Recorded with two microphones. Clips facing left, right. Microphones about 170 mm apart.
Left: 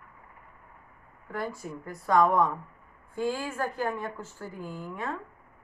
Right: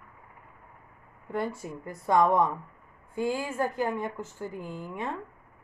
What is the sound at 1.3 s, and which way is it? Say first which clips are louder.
Speech: right 3 dB; 20° right (ahead or behind).